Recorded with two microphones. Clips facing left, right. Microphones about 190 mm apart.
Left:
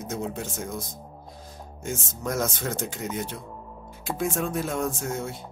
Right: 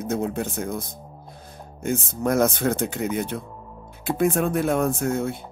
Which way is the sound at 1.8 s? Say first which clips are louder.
Right 7 dB; 60° right (ahead or behind).